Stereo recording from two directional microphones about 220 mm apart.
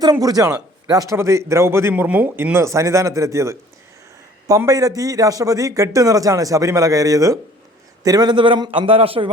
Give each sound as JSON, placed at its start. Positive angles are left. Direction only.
{"t": 0.0, "sound": "a man's voice", "side_deg": -15}